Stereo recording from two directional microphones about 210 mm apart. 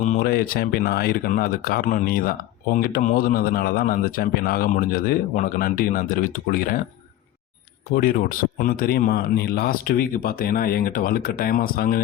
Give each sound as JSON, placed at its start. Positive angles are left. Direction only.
{"t": 0.0, "sound": "a man's voice", "side_deg": 40}
{"t": 7.9, "sound": "a man's voice", "side_deg": 40}